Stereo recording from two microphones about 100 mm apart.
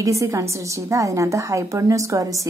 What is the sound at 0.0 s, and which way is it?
A woman's voice, 35° right (ahead or behind).